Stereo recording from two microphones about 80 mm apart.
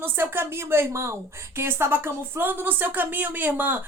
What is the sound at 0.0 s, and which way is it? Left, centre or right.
A woman's voice, right.